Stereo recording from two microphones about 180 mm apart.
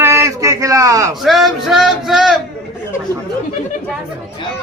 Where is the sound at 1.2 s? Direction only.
Centre (ahead or behind).